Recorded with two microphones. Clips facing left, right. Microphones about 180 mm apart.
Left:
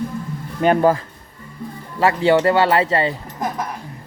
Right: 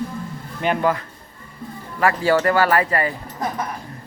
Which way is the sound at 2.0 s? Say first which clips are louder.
Left 3 dB; 20° left (ahead or behind).